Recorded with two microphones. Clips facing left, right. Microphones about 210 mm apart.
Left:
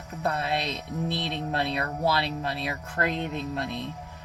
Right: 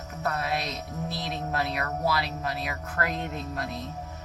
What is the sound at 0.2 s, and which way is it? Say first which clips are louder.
Speech: left 2 dB; 30° left (ahead or behind).